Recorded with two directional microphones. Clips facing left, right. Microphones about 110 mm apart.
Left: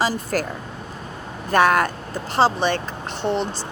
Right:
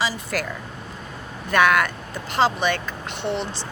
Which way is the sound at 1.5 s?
35° left (ahead or behind).